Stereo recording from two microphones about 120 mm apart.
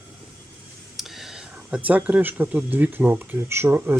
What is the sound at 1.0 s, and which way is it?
Speech, centre (ahead or behind).